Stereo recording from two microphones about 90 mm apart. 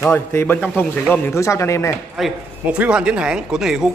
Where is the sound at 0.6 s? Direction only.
15° left (ahead or behind).